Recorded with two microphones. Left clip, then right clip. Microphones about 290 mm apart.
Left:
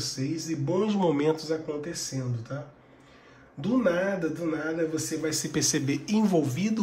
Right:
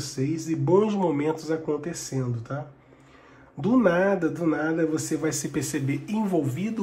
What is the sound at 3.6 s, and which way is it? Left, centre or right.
Speech, centre.